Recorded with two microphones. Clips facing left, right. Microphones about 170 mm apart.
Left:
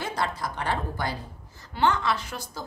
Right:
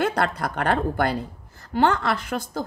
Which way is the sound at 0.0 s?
60° right (ahead or behind).